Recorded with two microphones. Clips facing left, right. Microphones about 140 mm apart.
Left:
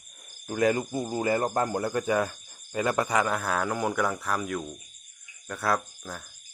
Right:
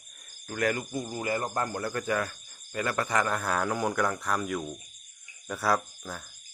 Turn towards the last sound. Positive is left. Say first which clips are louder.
# even
turn(degrees=0)  # may be behind; listen again after turning